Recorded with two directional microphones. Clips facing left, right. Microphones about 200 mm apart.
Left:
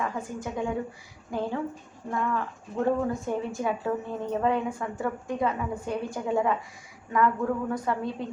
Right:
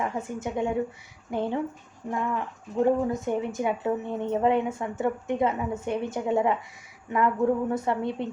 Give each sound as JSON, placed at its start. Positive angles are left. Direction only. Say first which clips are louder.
{"t": 0.0, "sound": "speech", "louder": "right 2 dB", "side_deg": -25}